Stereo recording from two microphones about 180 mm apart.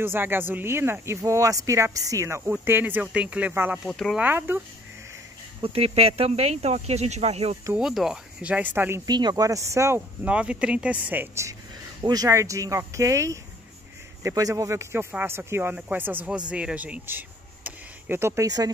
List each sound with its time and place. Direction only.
0.0 s speech: 10° right (ahead or behind)
3.8 s speech: centre (ahead or behind)
4.2 s speech: 10° right (ahead or behind)
5.6 s speech: 35° right (ahead or behind)
7.7 s speech: centre (ahead or behind)
17.6 s a sound: 10° right (ahead or behind)